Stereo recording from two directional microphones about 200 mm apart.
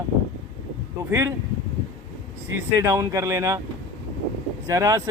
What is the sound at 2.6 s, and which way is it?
Speech, 15° right (ahead or behind).